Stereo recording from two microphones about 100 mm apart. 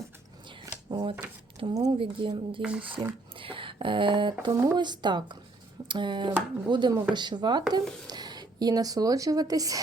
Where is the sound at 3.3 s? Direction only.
60° right (ahead or behind).